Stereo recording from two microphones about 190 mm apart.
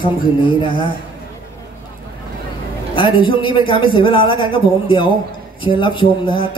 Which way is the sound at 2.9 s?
25° left (ahead or behind).